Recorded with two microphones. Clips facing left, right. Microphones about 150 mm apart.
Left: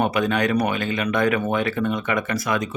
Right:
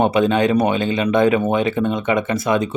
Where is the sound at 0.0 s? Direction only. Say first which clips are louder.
Right 5 dB; 25° right (ahead or behind).